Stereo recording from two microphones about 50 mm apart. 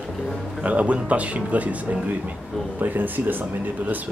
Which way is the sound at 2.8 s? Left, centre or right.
Right.